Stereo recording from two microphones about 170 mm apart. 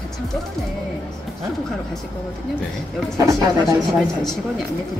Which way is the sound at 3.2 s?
20° right (ahead or behind).